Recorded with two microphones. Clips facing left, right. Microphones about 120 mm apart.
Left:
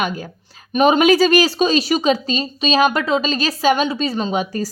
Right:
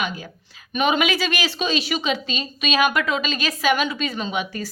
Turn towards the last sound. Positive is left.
turn(degrees=40)  # may be behind; listen again after turning